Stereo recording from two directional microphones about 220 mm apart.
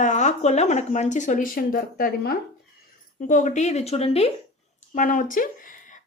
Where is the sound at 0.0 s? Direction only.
35° left (ahead or behind).